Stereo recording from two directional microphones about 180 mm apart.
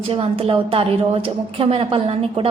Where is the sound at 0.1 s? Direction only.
30° right (ahead or behind).